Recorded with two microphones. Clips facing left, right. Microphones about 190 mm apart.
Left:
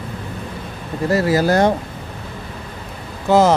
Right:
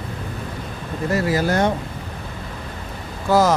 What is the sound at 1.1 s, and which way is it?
Speech, 40° left (ahead or behind).